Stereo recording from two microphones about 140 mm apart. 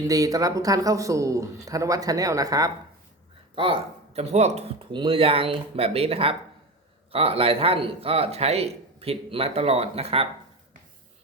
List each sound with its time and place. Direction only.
0.1 s a man's voice: 25° right (ahead or behind)
3.5 s speech: 40° right (ahead or behind)
4.9 s speech: 35° right (ahead or behind)